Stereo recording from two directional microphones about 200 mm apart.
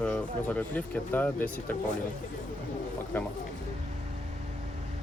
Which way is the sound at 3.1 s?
10° left (ahead or behind).